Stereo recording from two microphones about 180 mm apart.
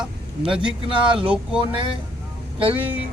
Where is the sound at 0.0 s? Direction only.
5° right (ahead or behind).